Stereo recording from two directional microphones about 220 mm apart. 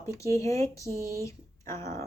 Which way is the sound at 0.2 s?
15° left (ahead or behind).